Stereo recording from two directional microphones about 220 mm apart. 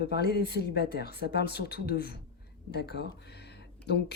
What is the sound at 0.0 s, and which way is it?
Speech, 45° left (ahead or behind).